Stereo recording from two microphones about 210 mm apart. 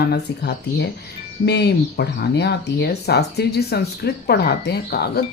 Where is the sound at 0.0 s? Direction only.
50° left (ahead or behind).